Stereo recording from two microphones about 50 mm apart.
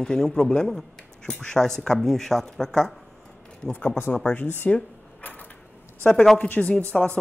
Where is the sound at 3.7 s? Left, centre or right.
Left.